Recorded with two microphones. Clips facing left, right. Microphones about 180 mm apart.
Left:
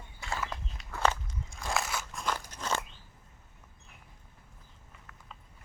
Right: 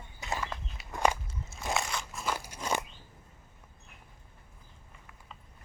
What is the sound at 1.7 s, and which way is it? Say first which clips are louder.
Crunch: left 1 dB; 5° left (ahead or behind).